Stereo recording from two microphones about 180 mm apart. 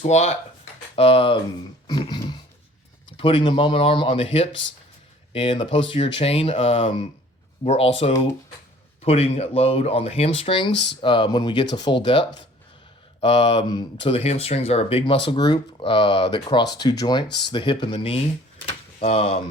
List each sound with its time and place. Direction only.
0.0 s speech: 40° left (ahead or behind)
1.9 s a sound: 25° left (ahead or behind)
3.1 s speech: 30° left (ahead or behind)